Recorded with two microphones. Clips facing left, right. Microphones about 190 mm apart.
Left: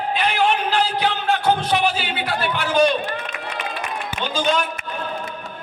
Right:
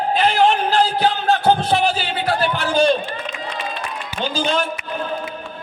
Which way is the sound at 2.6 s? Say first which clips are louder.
Even; 30° right (ahead or behind).